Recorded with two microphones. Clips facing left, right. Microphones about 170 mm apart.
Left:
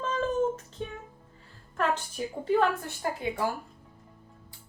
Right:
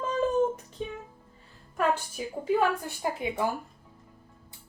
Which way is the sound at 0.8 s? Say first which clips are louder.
Right 2 dB; 10° right (ahead or behind).